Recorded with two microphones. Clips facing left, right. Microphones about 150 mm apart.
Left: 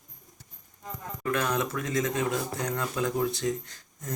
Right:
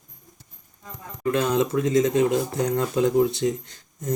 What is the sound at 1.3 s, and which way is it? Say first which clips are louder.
Speech: right 7 dB; 25° right (ahead or behind).